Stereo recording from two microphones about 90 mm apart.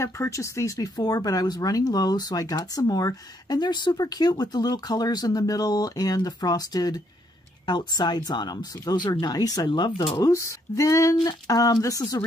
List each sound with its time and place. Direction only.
0.0 s speech: 35° left (ahead or behind); by 10.0 s 55° left (ahead or behind)
10.1 s speech: 35° left (ahead or behind)